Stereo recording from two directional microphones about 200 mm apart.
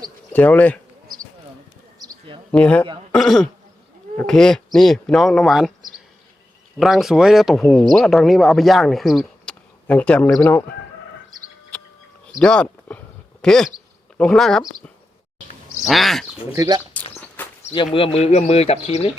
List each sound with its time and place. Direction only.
0.3 s speech: 10° left (ahead or behind)
2.0 s a sound: 20° right (ahead or behind)
2.5 s speech: 5° left (ahead or behind)
6.7 s speech: centre (ahead or behind)
12.4 s speech: 5° left (ahead or behind)
15.8 s speech: centre (ahead or behind)
16.5 s speech: 20° right (ahead or behind)
16.9 s walk: 10° left (ahead or behind)
17.9 s speech: 30° left (ahead or behind)